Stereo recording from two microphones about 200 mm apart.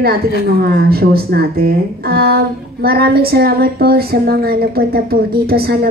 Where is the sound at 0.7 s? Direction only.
50° right (ahead or behind).